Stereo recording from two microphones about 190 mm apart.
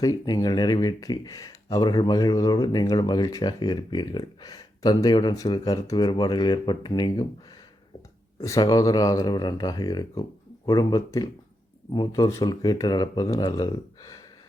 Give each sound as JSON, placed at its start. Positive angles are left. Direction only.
{"t": 0.0, "sound": "speech", "side_deg": 20}
{"t": 8.4, "sound": "speech", "side_deg": 15}